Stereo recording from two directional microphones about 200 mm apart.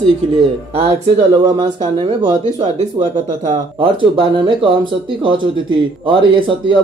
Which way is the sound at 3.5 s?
25° right (ahead or behind).